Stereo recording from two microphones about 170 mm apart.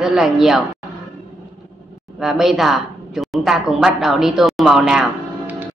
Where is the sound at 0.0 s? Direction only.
5° right (ahead or behind).